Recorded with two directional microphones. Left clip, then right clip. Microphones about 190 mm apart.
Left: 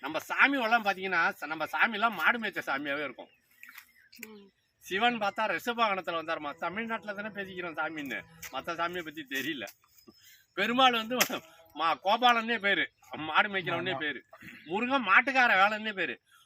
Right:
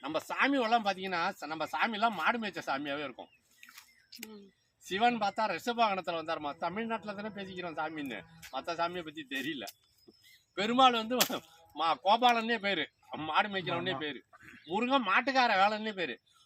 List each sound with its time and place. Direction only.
0.0 s speech: 10° right (ahead or behind)
4.9 s a man's voice: centre (ahead or behind)